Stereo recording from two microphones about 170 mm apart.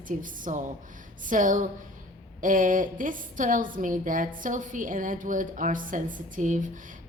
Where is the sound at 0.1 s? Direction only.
50° right (ahead or behind).